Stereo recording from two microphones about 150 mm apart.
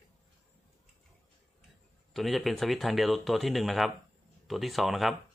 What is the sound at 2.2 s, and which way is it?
Speech, centre (ahead or behind).